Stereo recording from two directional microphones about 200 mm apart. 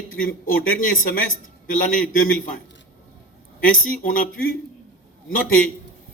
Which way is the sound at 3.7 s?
45° left (ahead or behind).